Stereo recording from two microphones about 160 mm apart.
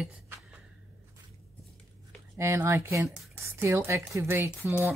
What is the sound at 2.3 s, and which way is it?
Speech, 15° right (ahead or behind).